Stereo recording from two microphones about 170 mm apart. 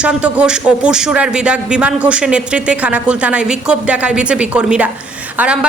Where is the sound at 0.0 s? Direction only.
5° right (ahead or behind).